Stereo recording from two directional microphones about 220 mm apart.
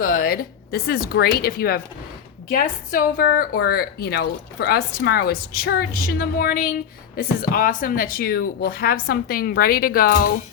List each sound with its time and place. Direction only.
0.0 s a woman's voice: 40° left (ahead or behind)